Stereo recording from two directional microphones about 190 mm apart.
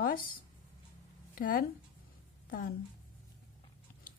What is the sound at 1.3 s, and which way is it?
Speech, 50° left (ahead or behind).